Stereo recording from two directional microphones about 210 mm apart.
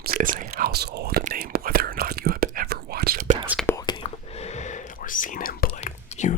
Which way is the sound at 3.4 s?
5° right (ahead or behind).